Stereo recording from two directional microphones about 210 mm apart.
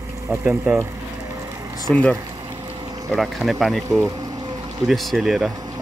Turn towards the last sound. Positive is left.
turn(degrees=0)  # may be behind; listen again after turning